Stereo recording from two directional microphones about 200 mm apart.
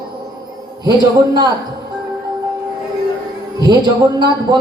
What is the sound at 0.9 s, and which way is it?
Speech, 20° right (ahead or behind).